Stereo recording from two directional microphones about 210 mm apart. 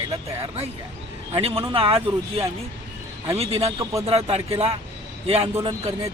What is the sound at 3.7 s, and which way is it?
Speech, 15° right (ahead or behind).